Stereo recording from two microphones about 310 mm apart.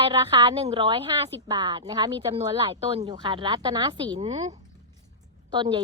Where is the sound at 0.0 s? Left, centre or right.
Centre.